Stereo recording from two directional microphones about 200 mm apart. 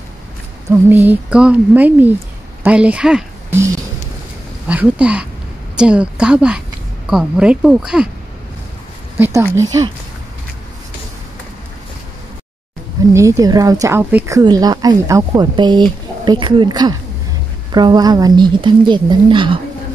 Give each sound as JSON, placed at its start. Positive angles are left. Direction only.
{"t": 0.7, "sound": "a woman's voice", "side_deg": -10}
{"t": 4.6, "sound": "a woman's voice", "side_deg": -5}
{"t": 9.2, "sound": "a woman's voice", "side_deg": -10}
{"t": 13.1, "sound": "a woman's voice", "side_deg": -15}